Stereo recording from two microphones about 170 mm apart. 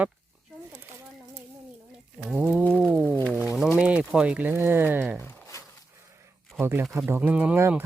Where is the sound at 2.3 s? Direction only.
5° right (ahead or behind).